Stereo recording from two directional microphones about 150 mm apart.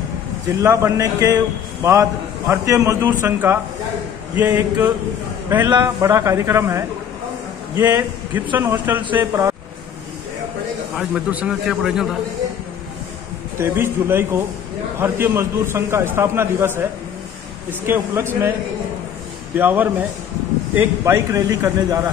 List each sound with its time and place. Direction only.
0.5 s a man's voice: 15° right (ahead or behind)
5.7 s a man's voice: 30° right (ahead or behind)
6.0 s a man's voice: 20° right (ahead or behind)
11.0 s a man's voice: 5° right (ahead or behind)
13.6 s a man's voice: 15° right (ahead or behind)
19.5 s a man's voice: 10° right (ahead or behind)